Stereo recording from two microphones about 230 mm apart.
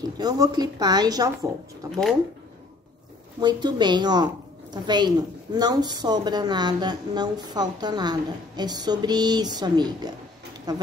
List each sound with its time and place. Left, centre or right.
0.0 s speech: centre
1.9 s speech: centre
3.3 s a woman's voice: centre